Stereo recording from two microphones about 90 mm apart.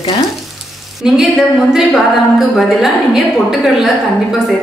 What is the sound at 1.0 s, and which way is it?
A woman's voice, 5° right (ahead or behind).